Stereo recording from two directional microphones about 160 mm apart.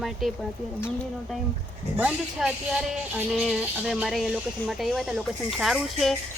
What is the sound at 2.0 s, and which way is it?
Speech, 5° right (ahead or behind).